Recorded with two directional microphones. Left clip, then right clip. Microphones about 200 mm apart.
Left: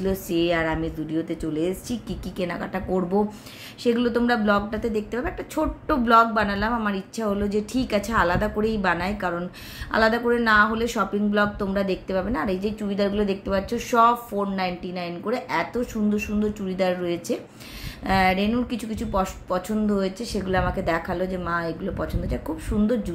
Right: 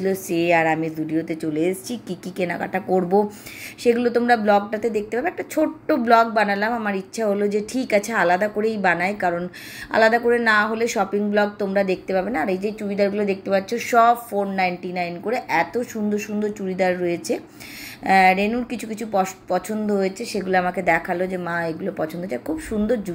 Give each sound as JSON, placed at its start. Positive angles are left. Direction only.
{"t": 0.0, "sound": "speech", "side_deg": -10}
{"t": 13.7, "sound": "speech", "side_deg": -10}